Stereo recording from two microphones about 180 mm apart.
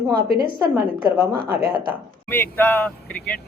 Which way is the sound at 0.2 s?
55° right (ahead or behind).